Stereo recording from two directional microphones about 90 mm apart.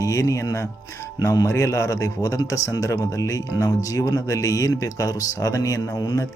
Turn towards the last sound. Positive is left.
turn(degrees=45)  # may be behind; listen again after turning